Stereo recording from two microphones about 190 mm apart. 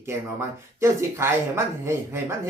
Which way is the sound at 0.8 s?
15° right (ahead or behind).